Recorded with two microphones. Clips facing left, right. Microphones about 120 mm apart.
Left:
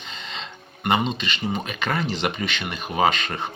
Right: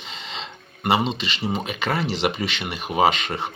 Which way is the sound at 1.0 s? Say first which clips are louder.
Right 1 dB; 25° right (ahead or behind).